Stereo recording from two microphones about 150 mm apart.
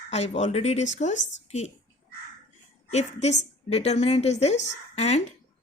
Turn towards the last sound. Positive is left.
turn(degrees=45)  # may be behind; listen again after turning